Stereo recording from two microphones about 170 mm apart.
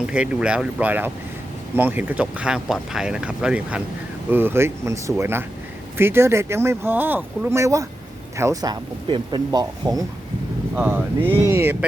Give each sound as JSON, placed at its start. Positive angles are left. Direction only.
{"t": 0.0, "sound": "speech", "side_deg": -5}
{"t": 10.8, "sound": "speech", "side_deg": -10}